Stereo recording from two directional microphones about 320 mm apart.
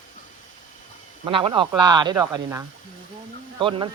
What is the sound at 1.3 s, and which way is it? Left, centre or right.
Speech, centre.